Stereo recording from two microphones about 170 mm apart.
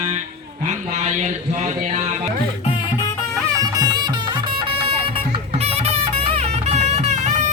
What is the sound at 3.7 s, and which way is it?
Music, 25° right (ahead or behind).